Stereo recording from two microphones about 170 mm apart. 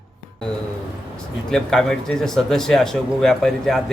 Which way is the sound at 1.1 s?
5° left (ahead or behind).